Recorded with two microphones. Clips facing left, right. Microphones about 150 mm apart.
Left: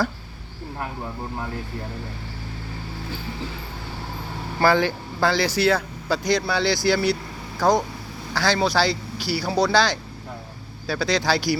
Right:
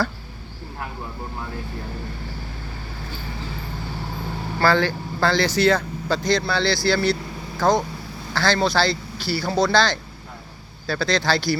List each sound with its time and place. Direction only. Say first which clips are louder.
4.6 s speech: even; 15° left (ahead or behind)